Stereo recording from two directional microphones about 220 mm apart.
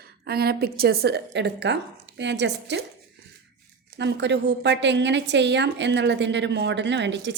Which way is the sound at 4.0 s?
50° right (ahead or behind).